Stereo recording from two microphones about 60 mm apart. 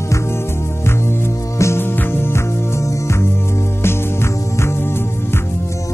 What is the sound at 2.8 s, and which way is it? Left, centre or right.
Music, left.